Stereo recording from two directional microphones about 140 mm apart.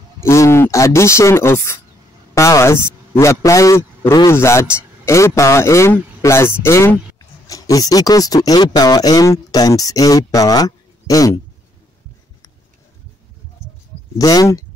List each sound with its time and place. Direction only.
0.2 s a man's voice: 20° left (ahead or behind)
14.1 s speech: 25° left (ahead or behind)